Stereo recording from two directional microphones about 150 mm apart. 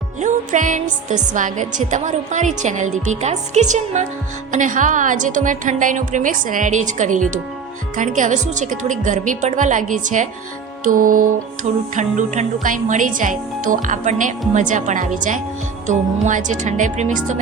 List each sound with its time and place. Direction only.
0.2 s speech: 55° right (ahead or behind)
11.9 s speech: 55° right (ahead or behind)